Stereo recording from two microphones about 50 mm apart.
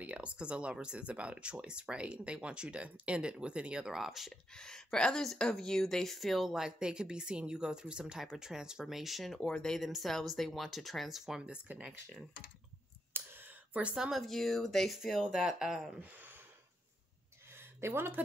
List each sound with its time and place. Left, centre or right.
0.0 s speech: right
3.9 s speech: centre
4.3 s speech: centre
11.4 s speech: right
13.1 s clicking: right
14.1 s speech: centre
15.0 s speech: centre
16.0 s a sound: right
17.5 s a sound: right